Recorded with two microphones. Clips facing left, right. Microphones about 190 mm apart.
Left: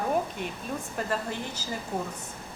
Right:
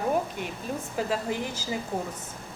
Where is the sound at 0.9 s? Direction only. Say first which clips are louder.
Right 3 dB; 10° right (ahead or behind).